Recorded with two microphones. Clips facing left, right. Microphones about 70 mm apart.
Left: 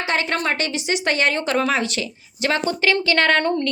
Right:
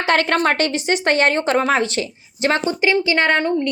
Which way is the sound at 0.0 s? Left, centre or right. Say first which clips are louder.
Right 5 dB; right.